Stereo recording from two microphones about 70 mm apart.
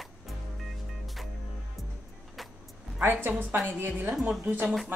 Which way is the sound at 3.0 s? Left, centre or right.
Right.